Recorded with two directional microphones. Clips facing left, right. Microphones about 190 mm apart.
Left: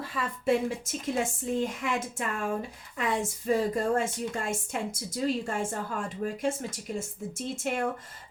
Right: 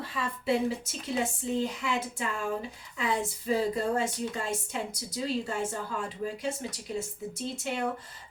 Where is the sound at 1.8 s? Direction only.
50° left (ahead or behind).